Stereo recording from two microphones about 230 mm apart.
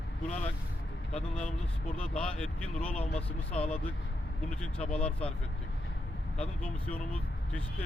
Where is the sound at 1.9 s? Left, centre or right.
Centre.